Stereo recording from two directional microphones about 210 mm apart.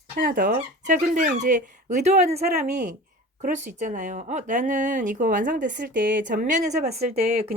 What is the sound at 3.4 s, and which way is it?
Speech, 35° right (ahead or behind).